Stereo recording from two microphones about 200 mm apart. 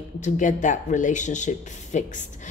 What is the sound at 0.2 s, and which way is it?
A woman's voice, 40° left (ahead or behind).